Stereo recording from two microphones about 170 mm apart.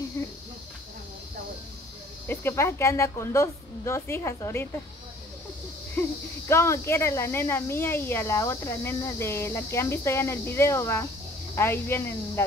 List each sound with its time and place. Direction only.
2.2 s speech: 15° left (ahead or behind)
5.9 s speech: 15° left (ahead or behind)